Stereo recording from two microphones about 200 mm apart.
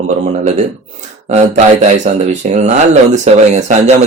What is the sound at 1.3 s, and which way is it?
Speech, 35° right (ahead or behind).